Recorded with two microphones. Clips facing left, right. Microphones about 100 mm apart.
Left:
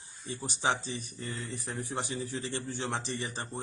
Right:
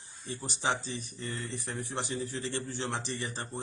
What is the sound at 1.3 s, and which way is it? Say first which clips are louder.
Speech: even; 5° left (ahead or behind).